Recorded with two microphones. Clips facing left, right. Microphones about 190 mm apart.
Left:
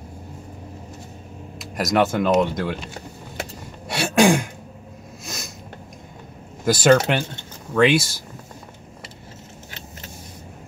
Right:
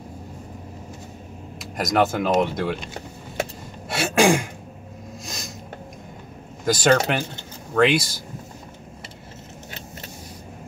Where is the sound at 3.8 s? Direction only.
5° right (ahead or behind).